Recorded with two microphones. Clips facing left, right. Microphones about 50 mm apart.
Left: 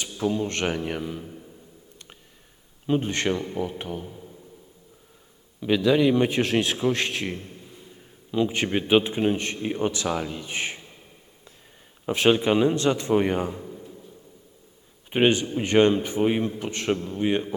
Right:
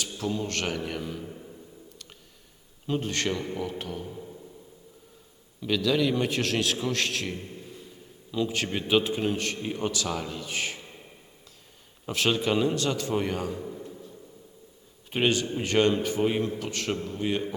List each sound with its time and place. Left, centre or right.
0.0 s a man's voice: left
2.8 s a man's voice: left
5.5 s a man's voice: left
12.0 s a man's voice: left
15.1 s a man's voice: left